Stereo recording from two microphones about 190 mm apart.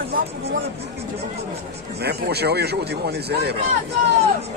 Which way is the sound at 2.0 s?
60° right (ahead or behind).